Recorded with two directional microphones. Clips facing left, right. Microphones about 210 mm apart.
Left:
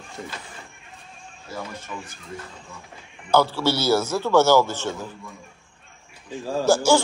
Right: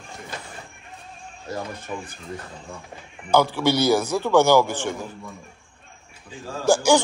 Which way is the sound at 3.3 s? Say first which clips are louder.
Right 1 dB; 15° right (ahead or behind).